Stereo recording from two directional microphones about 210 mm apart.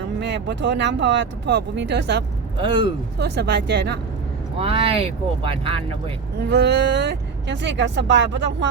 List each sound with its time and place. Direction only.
0.2 s speech: 55° right (ahead or behind)
2.6 s speech: 25° right (ahead or behind)
3.2 s speech: 50° right (ahead or behind)
4.5 s speech: 25° right (ahead or behind)
6.4 s speech: 55° right (ahead or behind)